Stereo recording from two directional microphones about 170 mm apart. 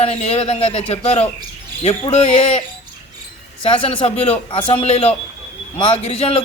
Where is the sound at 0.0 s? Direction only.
35° left (ahead or behind).